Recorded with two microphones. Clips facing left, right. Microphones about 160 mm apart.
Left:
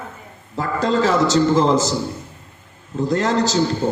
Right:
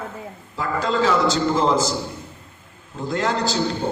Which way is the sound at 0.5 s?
40° left (ahead or behind).